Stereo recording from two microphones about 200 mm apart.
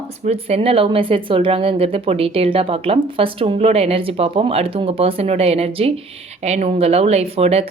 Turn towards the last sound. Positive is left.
turn(degrees=-30)  # may be behind; listen again after turning